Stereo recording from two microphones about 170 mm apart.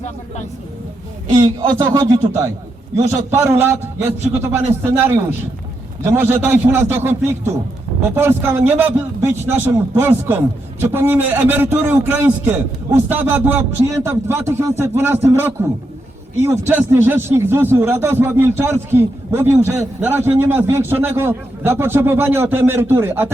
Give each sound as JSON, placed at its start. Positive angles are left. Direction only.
{"t": 1.5, "sound": "speech", "side_deg": -25}
{"t": 3.6, "sound": "a man's voice", "side_deg": -15}